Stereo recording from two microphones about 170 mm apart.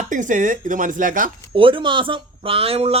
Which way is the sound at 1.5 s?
30° right (ahead or behind).